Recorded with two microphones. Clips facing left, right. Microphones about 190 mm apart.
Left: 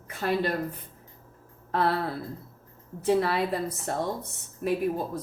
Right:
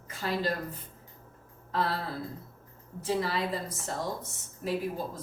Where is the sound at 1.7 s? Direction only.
60° left (ahead or behind).